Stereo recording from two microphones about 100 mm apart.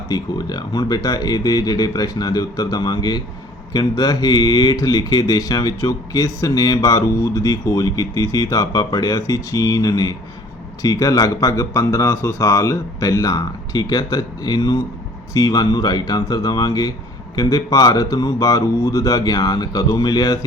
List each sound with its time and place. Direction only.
0.1 s speech: 45° left (ahead or behind)